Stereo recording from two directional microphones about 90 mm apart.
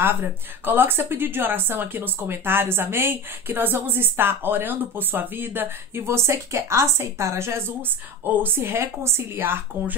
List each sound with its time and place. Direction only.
0.0 s a woman's voice: 25° right (ahead or behind)